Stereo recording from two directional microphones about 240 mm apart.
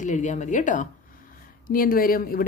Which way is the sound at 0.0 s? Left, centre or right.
Left.